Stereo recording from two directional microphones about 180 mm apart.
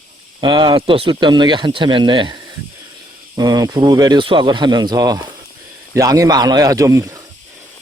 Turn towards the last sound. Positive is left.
turn(degrees=-15)  # may be behind; listen again after turning